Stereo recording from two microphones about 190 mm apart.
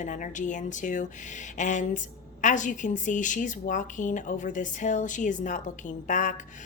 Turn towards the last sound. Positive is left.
turn(degrees=40)  # may be behind; listen again after turning